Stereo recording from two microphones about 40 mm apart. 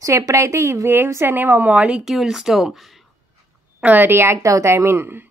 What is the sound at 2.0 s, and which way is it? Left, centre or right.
Speech, centre.